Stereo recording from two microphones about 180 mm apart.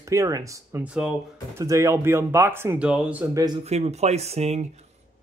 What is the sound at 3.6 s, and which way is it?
Speech, 35° right (ahead or behind).